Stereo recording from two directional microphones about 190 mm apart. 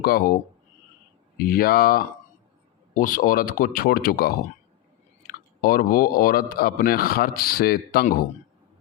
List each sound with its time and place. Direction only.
0.0 s speech: 50° left (ahead or behind)
1.4 s speech: 50° left (ahead or behind)